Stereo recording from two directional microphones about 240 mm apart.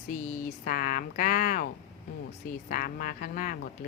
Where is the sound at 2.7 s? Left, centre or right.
Left.